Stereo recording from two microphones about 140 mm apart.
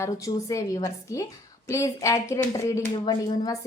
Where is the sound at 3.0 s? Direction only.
35° left (ahead or behind).